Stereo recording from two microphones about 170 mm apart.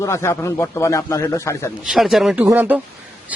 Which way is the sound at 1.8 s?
Centre (ahead or behind).